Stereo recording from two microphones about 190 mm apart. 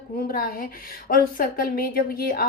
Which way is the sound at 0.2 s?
50° left (ahead or behind).